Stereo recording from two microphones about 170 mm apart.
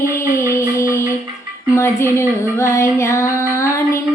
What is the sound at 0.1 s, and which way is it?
Music, 15° left (ahead or behind).